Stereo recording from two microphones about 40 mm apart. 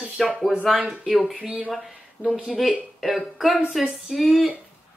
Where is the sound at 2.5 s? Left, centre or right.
Centre.